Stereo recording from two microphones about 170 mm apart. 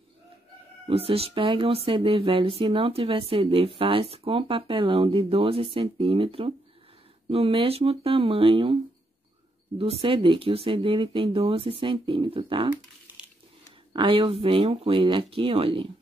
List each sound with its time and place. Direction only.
0.8 s speech: 35° right (ahead or behind)
9.8 s speech: 35° right (ahead or behind)
13.9 s speech: 30° right (ahead or behind)